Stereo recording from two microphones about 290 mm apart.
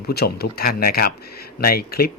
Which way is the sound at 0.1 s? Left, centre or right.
Left.